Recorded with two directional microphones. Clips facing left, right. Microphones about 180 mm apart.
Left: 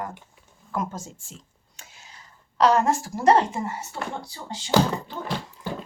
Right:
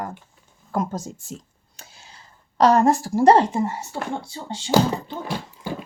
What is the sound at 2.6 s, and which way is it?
Speech, 35° right (ahead or behind).